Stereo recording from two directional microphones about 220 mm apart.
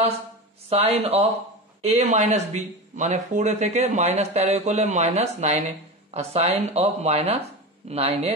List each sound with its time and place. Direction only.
0.7 s speech: 30° right (ahead or behind)